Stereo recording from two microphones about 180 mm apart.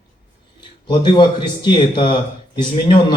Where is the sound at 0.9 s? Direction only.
25° left (ahead or behind).